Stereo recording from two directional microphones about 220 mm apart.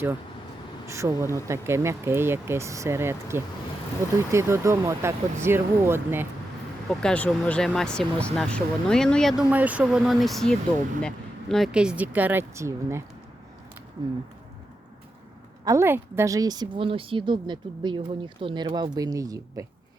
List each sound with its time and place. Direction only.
0.9 s speech: 15° right (ahead or behind)
7.0 s speech: 5° left (ahead or behind); by 13.0 s 10° right (ahead or behind)
14.0 s speech: 20° right (ahead or behind)
15.6 s a woman's voice: 15° right (ahead or behind)